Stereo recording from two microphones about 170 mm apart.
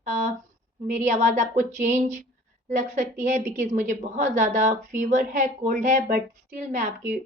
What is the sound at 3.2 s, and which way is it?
A woman's voice, 45° right (ahead or behind).